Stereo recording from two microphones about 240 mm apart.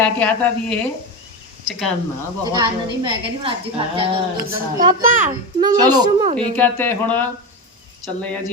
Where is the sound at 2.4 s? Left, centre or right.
Centre.